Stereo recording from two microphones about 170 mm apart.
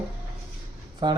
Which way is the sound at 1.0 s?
25° right (ahead or behind).